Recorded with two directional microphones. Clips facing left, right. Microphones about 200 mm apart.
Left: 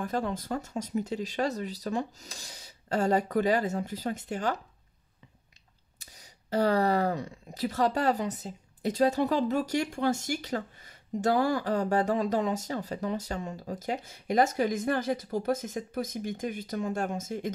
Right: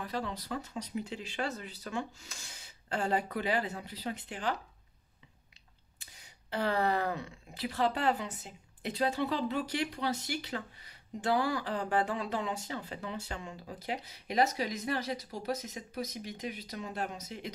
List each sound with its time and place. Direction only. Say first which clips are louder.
0.0 s speech: left 6 dB; 50° left (ahead or behind)
5.9 s speech: left 4 dB; 40° left (ahead or behind)